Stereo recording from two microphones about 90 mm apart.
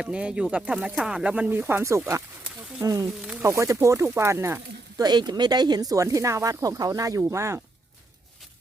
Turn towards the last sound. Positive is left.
turn(degrees=-35)  # may be behind; listen again after turning